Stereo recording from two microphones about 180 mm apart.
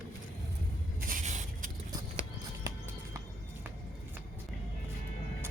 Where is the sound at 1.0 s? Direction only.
45° right (ahead or behind).